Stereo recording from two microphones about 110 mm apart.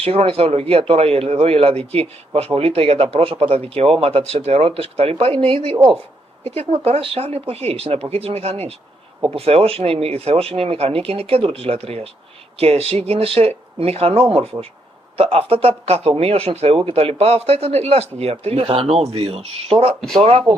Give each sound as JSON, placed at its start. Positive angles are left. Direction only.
{"t": 0.0, "sound": "speech", "side_deg": -60}
{"t": 20.0, "sound": "speech", "side_deg": 0}